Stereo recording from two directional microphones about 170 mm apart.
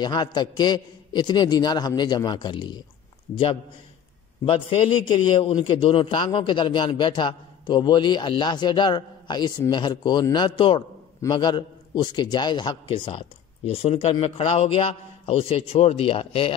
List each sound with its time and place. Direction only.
0.0 s a man's voice: 25° left (ahead or behind)
4.5 s a man's voice: 30° left (ahead or behind)